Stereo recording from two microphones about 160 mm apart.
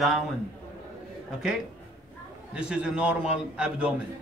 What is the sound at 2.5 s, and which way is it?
Speech, 5° right (ahead or behind).